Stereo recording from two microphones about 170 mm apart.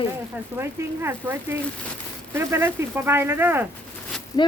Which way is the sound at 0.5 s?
15° right (ahead or behind).